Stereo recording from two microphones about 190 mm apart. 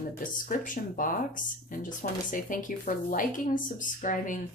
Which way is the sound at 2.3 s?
45° left (ahead or behind).